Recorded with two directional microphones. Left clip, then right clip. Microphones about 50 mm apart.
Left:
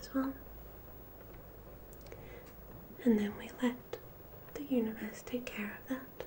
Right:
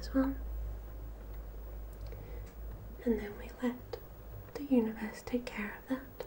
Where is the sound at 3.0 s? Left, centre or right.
Centre.